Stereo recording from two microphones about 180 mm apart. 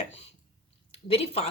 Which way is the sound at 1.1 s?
35° left (ahead or behind).